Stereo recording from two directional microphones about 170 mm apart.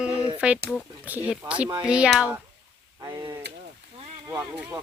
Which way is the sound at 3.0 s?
20° right (ahead or behind).